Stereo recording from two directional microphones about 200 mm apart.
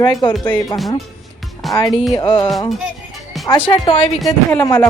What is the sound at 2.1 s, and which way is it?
A woman's voice, 20° left (ahead or behind).